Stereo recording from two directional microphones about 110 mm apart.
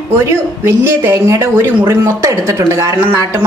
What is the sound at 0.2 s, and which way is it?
Speech, 25° right (ahead or behind).